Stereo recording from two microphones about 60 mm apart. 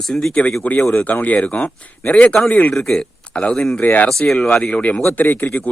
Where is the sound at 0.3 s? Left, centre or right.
Centre.